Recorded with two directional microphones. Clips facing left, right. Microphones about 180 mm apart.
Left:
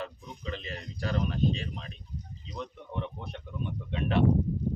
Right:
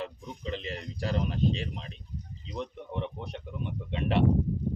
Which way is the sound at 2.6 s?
25° right (ahead or behind).